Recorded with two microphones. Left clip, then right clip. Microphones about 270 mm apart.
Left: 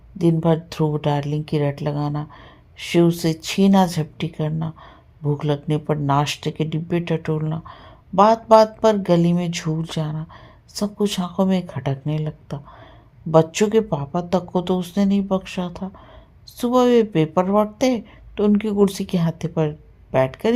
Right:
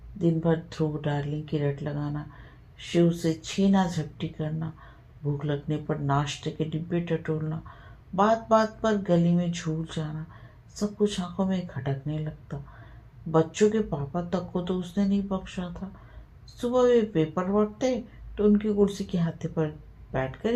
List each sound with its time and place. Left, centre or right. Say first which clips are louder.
0.2 s a woman's voice: left 7 dB; left